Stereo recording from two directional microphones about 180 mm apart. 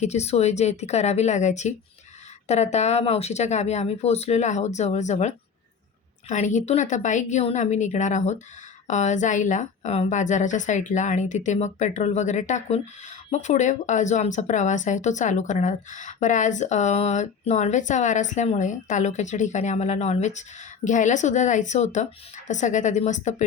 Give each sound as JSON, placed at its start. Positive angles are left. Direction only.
{"t": 0.0, "sound": "a woman's voice", "side_deg": 35}